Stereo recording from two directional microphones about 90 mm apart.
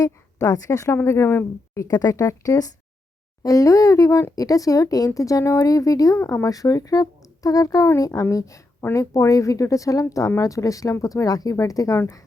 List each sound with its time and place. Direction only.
0.0 s a woman's voice: 40° left (ahead or behind)